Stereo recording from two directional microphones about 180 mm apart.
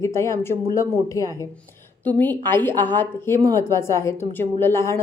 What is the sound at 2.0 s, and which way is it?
A woman's voice, 10° left (ahead or behind).